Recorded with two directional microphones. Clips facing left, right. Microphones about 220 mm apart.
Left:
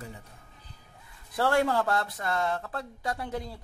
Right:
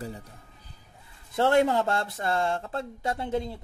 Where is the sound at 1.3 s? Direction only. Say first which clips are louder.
Right 3 dB; 20° right (ahead or behind).